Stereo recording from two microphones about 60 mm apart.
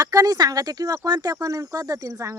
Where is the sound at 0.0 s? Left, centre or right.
Right.